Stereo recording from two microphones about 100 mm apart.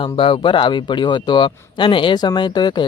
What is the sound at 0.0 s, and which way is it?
Speech, 60° left (ahead or behind).